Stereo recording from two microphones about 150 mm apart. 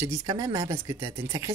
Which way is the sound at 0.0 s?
25° right (ahead or behind).